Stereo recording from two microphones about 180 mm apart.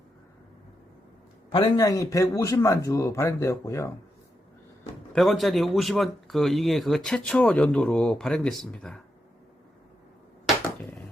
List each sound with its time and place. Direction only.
1.5 s speech: 25° left (ahead or behind)
5.1 s speech: centre (ahead or behind)